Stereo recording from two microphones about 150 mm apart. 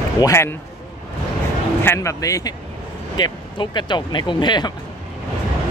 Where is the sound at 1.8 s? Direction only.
20° left (ahead or behind).